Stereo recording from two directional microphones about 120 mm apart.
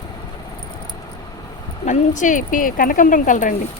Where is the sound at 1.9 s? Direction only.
90° left.